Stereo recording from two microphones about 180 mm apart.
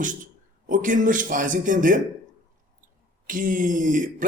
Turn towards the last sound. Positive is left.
turn(degrees=-45)  # may be behind; listen again after turning